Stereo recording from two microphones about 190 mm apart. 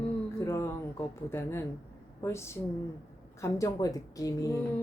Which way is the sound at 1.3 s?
15° left (ahead or behind).